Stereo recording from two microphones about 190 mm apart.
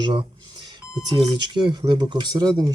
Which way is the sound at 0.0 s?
25° right (ahead or behind).